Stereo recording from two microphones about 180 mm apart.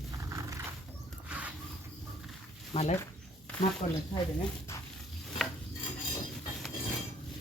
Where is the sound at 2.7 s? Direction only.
35° left (ahead or behind).